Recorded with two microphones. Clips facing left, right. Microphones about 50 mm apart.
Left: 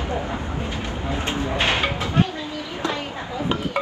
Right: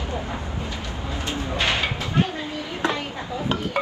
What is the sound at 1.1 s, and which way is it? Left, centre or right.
Speech, left.